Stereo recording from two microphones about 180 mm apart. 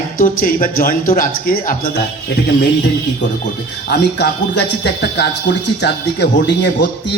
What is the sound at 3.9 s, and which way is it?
Speech, 65° left (ahead or behind).